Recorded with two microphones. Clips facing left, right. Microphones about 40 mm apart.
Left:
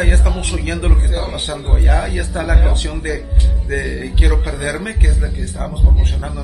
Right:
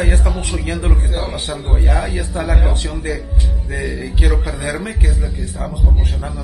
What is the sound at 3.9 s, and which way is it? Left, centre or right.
Speech, left.